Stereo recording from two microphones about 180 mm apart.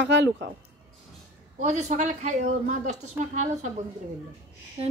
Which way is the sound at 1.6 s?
40° right (ahead or behind).